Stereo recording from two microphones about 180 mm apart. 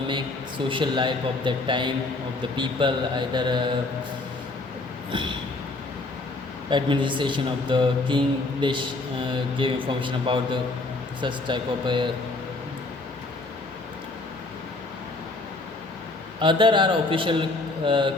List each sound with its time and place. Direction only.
0.7 s speech: 25° right (ahead or behind)
6.7 s speech: 25° right (ahead or behind)
16.4 s speech: 25° right (ahead or behind)